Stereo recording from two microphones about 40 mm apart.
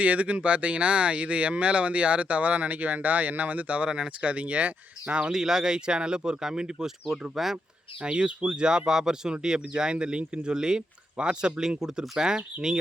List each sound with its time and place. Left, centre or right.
0.0 s speech: right
3.8 s speech: right
5.3 s speech: centre
7.1 s speech: centre
8.0 s speech: right